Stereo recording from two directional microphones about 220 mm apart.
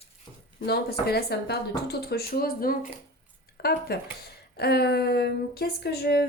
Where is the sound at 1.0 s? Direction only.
45° left (ahead or behind).